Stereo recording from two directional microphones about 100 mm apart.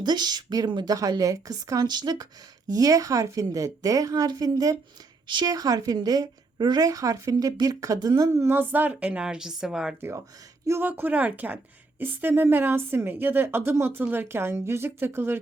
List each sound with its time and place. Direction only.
0.0 s a woman's voice: 45° right (ahead or behind)
8.3 s a woman's voice: 20° right (ahead or behind); by 9.9 s 5° right (ahead or behind)
10.7 s a woman's voice: 20° right (ahead or behind)